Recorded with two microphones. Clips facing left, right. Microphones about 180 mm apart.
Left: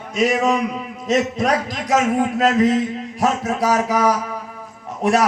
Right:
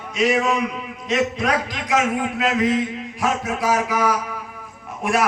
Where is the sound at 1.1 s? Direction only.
40° left (ahead or behind).